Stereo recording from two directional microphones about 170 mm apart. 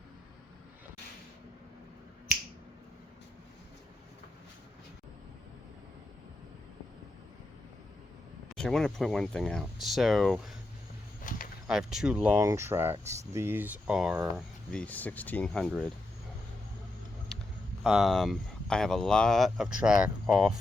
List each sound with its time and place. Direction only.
8.5 s speech: 5° left (ahead or behind)
11.2 s a sound: 50° left (ahead or behind)
11.7 s speech: 5° right (ahead or behind)
12.4 s speech: 15° right (ahead or behind)
14.7 s speech: 5° left (ahead or behind)
17.8 s speech: centre (ahead or behind)